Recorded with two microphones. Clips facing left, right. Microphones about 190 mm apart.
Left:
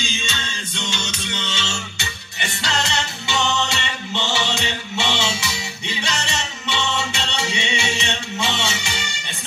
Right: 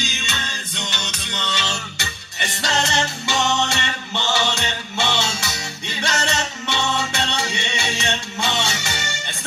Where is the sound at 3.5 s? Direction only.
60° right (ahead or behind).